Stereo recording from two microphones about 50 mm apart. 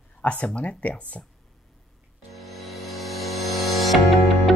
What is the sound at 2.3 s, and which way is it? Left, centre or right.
Music, centre.